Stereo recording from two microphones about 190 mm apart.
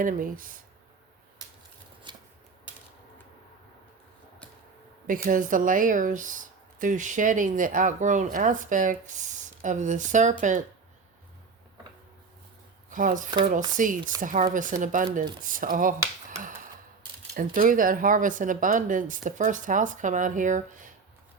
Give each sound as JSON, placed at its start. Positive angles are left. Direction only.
{"t": 0.0, "sound": "speech", "side_deg": -45}
{"t": 2.1, "sound": "shuffling cards", "side_deg": -25}
{"t": 5.0, "sound": "speech", "side_deg": -45}
{"t": 12.9, "sound": "speech", "side_deg": -45}